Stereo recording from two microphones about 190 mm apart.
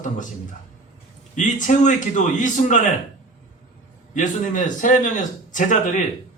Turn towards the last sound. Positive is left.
turn(degrees=40)  # may be behind; listen again after turning